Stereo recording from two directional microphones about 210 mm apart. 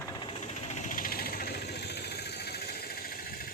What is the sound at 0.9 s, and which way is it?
Vehicle, 45° left (ahead or behind).